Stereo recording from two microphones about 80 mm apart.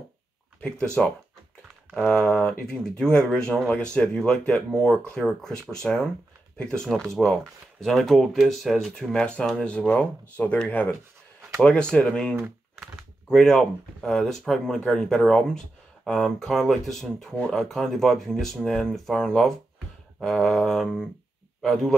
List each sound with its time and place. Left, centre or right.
0.6 s speech: centre
2.0 s a man's voice: centre